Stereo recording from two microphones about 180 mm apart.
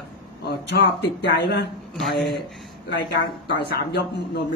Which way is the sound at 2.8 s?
65° left (ahead or behind).